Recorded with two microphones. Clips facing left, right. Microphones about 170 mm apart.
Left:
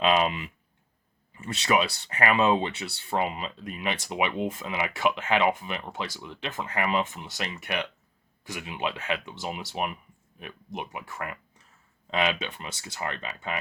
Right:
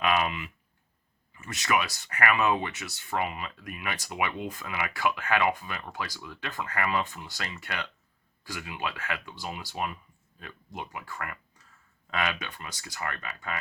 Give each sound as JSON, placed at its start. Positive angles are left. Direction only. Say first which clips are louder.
{"t": 0.0, "sound": "speech", "louder": "left 3 dB", "side_deg": 25}